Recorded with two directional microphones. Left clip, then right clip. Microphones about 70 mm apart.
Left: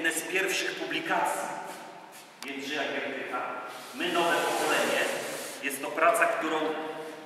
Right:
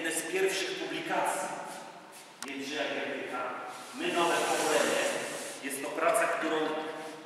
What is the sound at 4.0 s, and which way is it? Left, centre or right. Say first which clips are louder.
Speech: left 2 dB; centre.